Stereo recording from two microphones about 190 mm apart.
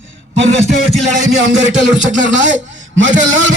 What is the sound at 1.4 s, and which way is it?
A man's voice, 75° right (ahead or behind).